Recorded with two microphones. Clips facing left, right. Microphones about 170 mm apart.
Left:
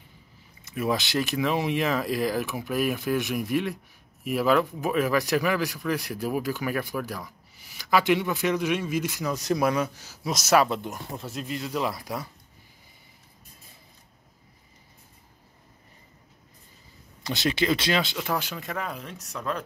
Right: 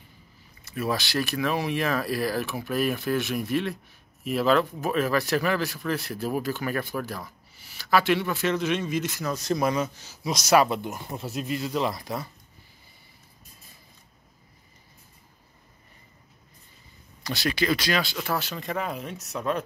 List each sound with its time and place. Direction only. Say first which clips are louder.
0.7 s speech: left 1 dB; 20° left (ahead or behind); by 11.7 s 10° right (ahead or behind)
11.7 s speech: left 1 dB; 5° left (ahead or behind)
17.2 s speech: left 1 dB; 20° left (ahead or behind)
18.1 s speech: even; 10° left (ahead or behind); by 19.6 s 5° right (ahead or behind)